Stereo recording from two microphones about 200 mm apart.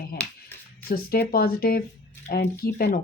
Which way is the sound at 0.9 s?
50° left (ahead or behind).